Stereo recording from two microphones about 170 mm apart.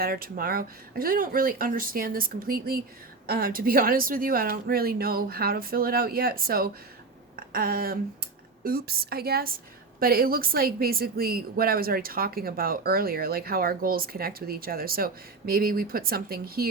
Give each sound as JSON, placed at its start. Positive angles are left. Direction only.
{"t": 0.0, "sound": "speech", "side_deg": -60}
{"t": 7.3, "sound": "a sound", "side_deg": -60}
{"t": 8.6, "sound": "speech", "side_deg": -60}